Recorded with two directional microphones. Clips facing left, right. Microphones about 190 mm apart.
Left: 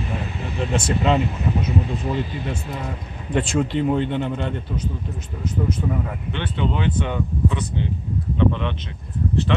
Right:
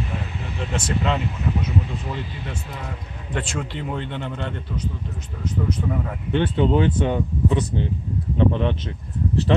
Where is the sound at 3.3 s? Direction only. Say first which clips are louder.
Left 7 dB; 20° left (ahead or behind).